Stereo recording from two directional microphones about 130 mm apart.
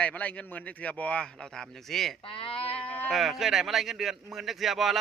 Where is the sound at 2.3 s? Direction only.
45° left (ahead or behind).